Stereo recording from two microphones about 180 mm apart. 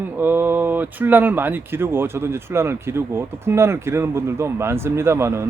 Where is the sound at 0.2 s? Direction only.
10° right (ahead or behind).